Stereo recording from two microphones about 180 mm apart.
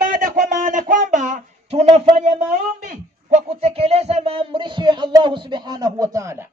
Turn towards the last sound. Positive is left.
turn(degrees=-15)  # may be behind; listen again after turning